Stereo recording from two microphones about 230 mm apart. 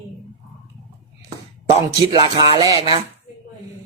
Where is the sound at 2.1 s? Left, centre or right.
Centre.